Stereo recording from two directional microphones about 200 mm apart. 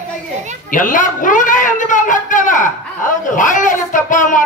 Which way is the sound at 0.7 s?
40° left (ahead or behind).